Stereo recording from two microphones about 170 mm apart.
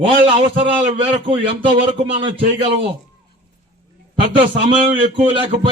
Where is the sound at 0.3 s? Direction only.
30° right (ahead or behind).